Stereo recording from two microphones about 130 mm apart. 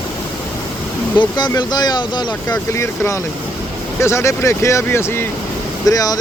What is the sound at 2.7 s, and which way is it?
Speech, 20° left (ahead or behind).